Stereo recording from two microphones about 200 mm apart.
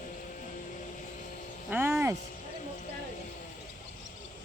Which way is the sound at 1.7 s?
10° right (ahead or behind).